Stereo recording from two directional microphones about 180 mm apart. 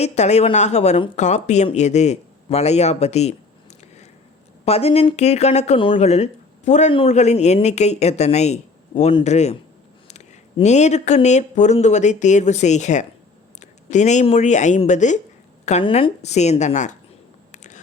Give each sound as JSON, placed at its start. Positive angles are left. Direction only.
{"t": 0.0, "sound": "speech", "side_deg": 40}
{"t": 4.6, "sound": "speech", "side_deg": 35}
{"t": 17.5, "sound": "a sound", "side_deg": 40}